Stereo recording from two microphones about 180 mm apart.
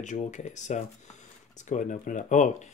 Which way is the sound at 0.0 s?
40° left (ahead or behind).